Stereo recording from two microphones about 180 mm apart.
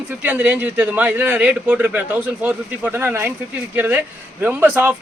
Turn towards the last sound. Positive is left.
turn(degrees=-10)  # may be behind; listen again after turning